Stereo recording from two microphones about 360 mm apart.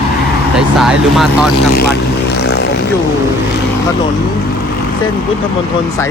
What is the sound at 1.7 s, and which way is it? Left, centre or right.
Vehicle, left.